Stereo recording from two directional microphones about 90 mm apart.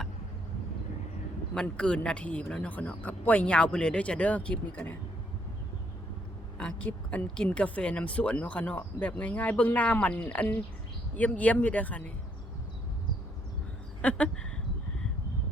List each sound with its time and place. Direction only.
1.7 s speech: 10° left (ahead or behind)
6.6 s speech: 10° left (ahead or behind)
14.0 s a sound: 15° left (ahead or behind)